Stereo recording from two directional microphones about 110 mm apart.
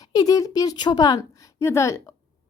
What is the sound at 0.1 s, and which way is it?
A woman's voice, 35° left (ahead or behind).